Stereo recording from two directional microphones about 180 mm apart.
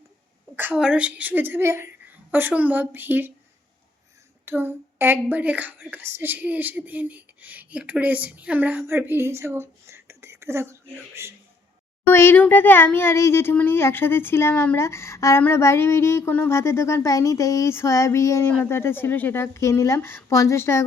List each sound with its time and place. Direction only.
0.5 s a woman's voice: 10° right (ahead or behind)
4.4 s a woman's voice: 15° right (ahead or behind)
12.0 s speech: 15° left (ahead or behind)